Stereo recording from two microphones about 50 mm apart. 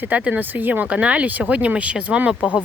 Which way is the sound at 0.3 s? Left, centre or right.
Right.